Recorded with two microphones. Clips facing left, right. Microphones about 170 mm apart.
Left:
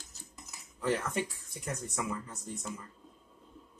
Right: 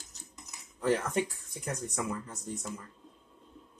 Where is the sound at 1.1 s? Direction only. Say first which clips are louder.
Right 4 dB; 50° right (ahead or behind).